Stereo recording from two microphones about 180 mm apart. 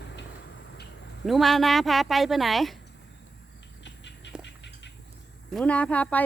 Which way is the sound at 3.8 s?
75° left (ahead or behind).